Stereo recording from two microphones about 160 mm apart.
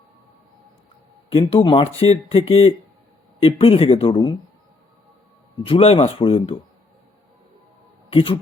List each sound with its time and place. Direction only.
1.3 s speech: 35° left (ahead or behind)
5.6 s speech: 35° left (ahead or behind)
8.1 s speech: 35° left (ahead or behind)